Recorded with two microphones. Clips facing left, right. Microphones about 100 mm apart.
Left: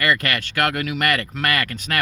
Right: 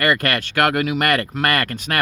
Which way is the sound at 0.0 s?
50° right (ahead or behind).